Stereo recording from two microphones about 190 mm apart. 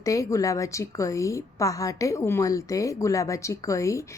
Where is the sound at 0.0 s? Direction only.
15° left (ahead or behind).